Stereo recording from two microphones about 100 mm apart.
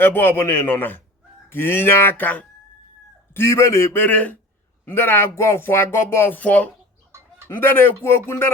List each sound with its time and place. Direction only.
0.0 s speech: 20° left (ahead or behind)
3.3 s speech: 30° left (ahead or behind)